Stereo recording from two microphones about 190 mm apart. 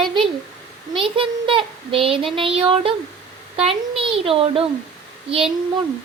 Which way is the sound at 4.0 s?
30° right (ahead or behind).